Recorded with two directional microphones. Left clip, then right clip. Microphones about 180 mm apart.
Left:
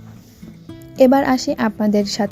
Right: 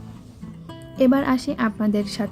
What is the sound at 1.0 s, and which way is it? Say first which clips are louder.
Speech: left 6 dB; 25° left (ahead or behind).